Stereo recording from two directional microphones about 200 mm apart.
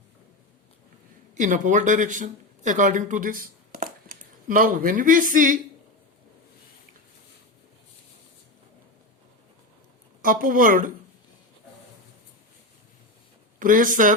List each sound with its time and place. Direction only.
1.4 s speech: 40° right (ahead or behind)
10.2 s speech: 45° right (ahead or behind)
13.6 s speech: 40° right (ahead or behind)